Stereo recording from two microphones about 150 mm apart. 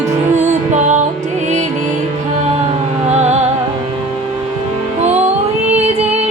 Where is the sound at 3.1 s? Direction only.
50° right (ahead or behind).